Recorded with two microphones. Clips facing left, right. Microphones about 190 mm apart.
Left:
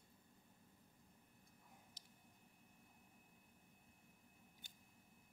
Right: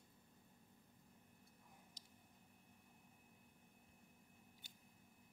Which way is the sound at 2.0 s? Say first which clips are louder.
Right 1 dB; 60° left (ahead or behind).